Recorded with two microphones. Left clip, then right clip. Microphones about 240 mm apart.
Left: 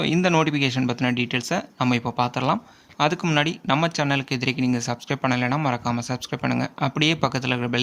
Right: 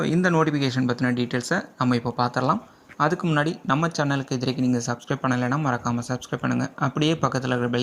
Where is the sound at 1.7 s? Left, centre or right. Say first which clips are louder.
Left 1 dB; left.